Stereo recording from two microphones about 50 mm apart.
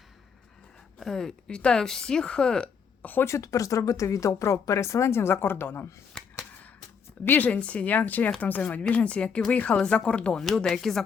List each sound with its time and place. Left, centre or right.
0.9 s speech: centre
3.0 s a woman's voice: left
3.2 s speech: left
7.3 s speech: left
7.6 s speech: left
10.3 s speech: centre